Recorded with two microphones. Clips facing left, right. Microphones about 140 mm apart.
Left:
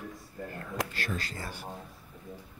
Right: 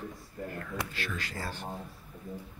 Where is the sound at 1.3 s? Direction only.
15° left (ahead or behind).